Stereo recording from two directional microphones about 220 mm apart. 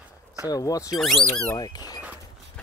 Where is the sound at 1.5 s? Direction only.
20° left (ahead or behind).